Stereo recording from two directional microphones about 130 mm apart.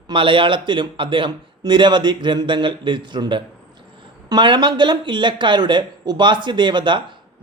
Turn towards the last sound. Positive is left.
turn(degrees=-35)  # may be behind; listen again after turning